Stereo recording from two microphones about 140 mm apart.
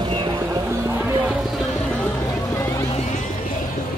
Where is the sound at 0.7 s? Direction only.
15° right (ahead or behind).